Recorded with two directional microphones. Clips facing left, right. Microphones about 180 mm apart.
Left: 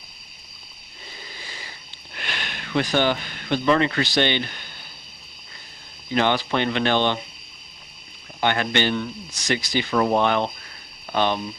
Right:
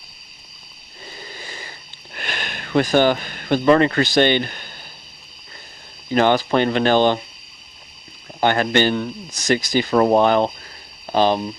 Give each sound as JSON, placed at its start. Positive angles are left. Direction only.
{"t": 1.2, "sound": "a sound", "side_deg": -45}
{"t": 2.1, "sound": "speech", "side_deg": -45}
{"t": 6.1, "sound": "speech", "side_deg": -45}
{"t": 8.4, "sound": "speech", "side_deg": -40}